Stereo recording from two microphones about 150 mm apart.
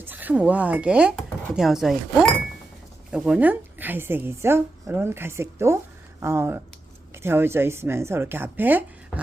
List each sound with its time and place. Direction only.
0.0 s a woman's voice: 10° right (ahead or behind)